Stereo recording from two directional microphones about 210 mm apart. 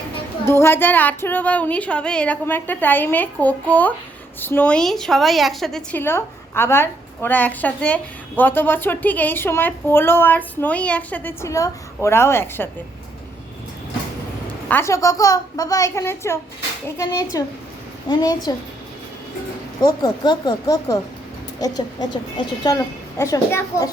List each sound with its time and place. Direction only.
0.4 s a woman's voice: 10° left (ahead or behind)
14.7 s a woman's voice: 10° left (ahead or behind)
19.8 s a woman's voice: 20° left (ahead or behind)